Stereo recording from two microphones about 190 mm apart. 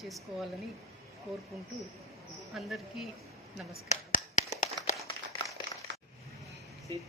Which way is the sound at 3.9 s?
35° left (ahead or behind).